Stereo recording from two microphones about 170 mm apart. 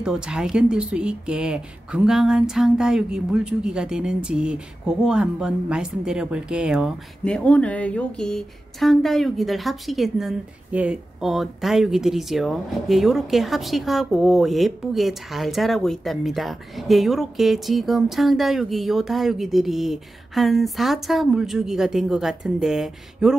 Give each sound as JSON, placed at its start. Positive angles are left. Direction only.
{"t": 0.0, "sound": "speech", "side_deg": -5}